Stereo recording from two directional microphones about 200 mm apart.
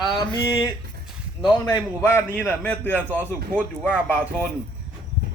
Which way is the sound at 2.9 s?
10° right (ahead or behind).